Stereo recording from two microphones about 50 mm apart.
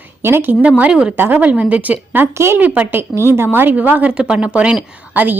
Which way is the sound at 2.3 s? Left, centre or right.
Right.